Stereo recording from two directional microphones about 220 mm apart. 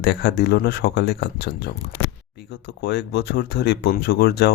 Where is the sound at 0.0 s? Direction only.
50° left (ahead or behind).